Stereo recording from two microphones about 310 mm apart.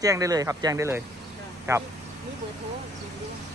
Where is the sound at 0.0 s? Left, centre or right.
Centre.